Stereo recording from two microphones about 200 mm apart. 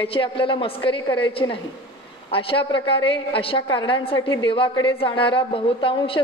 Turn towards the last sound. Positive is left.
turn(degrees=25)  # may be behind; listen again after turning